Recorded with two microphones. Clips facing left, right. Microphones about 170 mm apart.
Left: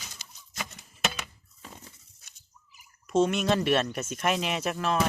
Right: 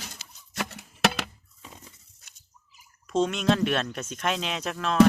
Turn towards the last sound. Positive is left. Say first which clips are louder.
# left 1 dB
turn(degrees=5)  # may be behind; listen again after turning